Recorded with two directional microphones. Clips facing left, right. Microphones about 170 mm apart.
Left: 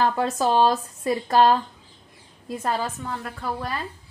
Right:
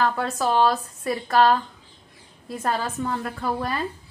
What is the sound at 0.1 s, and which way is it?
A woman's voice, 15° left (ahead or behind).